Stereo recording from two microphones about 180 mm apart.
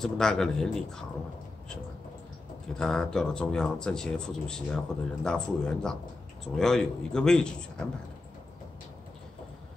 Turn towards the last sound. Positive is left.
turn(degrees=5)  # may be behind; listen again after turning